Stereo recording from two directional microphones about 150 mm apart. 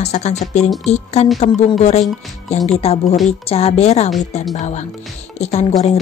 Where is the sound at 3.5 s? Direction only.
40° left (ahead or behind).